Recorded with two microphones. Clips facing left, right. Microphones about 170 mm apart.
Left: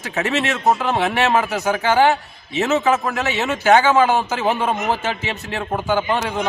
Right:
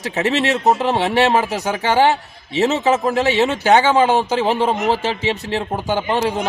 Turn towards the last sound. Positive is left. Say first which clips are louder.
# right 1 dB
turn(degrees=-35)  # may be behind; listen again after turning